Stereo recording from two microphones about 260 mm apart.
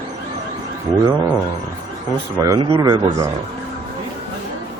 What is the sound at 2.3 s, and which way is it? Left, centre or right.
Speech, centre.